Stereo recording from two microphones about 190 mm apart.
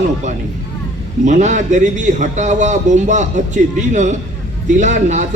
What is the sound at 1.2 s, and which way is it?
A man's voice, 40° right (ahead or behind).